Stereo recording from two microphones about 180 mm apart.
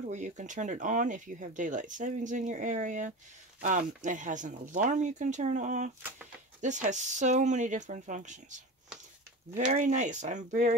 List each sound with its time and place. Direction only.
0.1 s speech: 40° right (ahead or behind)
9.7 s speech: 40° right (ahead or behind)